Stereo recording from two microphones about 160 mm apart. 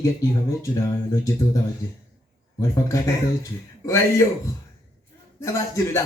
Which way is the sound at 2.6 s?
20° left (ahead or behind).